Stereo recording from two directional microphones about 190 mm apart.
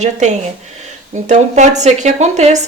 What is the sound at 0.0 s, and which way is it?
Speech, 35° right (ahead or behind).